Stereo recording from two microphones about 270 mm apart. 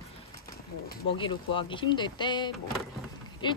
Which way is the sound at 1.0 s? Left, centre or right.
Centre.